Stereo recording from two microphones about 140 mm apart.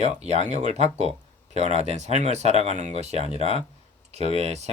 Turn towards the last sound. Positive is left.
turn(degrees=-50)  # may be behind; listen again after turning